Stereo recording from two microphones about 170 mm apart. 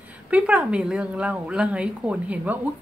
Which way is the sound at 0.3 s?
5° right (ahead or behind).